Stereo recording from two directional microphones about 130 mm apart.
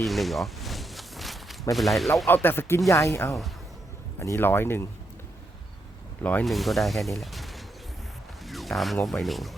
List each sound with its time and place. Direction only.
0.0 s a sound: centre (ahead or behind)
1.7 s speech: centre (ahead or behind)
2.2 s speech: 15° left (ahead or behind)
6.4 s speech: centre (ahead or behind)
8.4 s a sound: centre (ahead or behind)
9.0 s speech: centre (ahead or behind)